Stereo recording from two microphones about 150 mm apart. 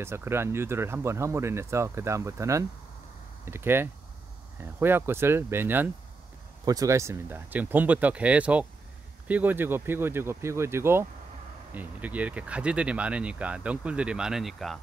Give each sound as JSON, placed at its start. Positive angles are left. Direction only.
{"t": 0.0, "sound": "speech", "side_deg": -15}